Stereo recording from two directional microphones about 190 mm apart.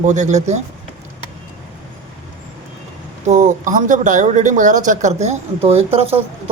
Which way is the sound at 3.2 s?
40° right (ahead or behind).